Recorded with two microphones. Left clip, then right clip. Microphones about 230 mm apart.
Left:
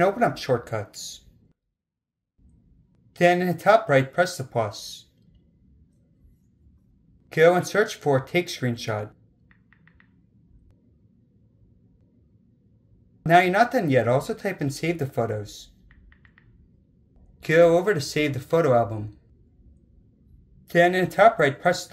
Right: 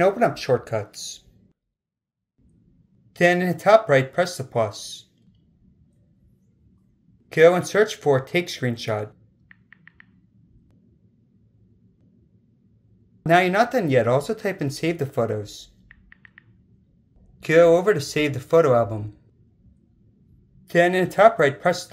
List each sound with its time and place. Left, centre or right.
0.0 s speech: centre
3.1 s speech: centre
7.2 s speech: centre
13.2 s speech: centre
15.9 s a sound: centre
17.4 s speech: centre
20.6 s speech: centre